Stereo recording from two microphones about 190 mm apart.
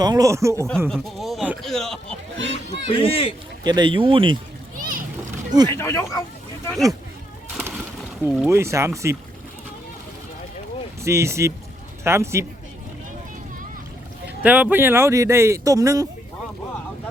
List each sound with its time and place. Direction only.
0.0 s speech: 20° right (ahead or behind)
0.9 s speech: centre (ahead or behind)
2.4 s run: 75° right (ahead or behind)
3.0 s speech: 30° left (ahead or behind)
3.6 s speech: 20° right (ahead or behind)
4.8 s a sound: 45° right (ahead or behind)
5.7 s speech: 15° left (ahead or behind)
8.2 s speech: 10° right (ahead or behind)
11.0 s speech: 15° right (ahead or behind)
14.4 s speech: 10° right (ahead or behind)